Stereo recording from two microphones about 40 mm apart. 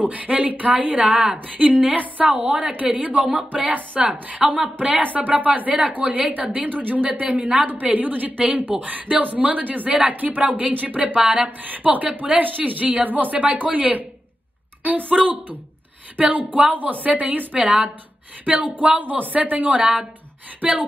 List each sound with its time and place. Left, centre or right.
0.0 s a woman's voice: right
11.1 s a woman's voice: right
11.4 s speech: right
12.4 s a woman's voice: right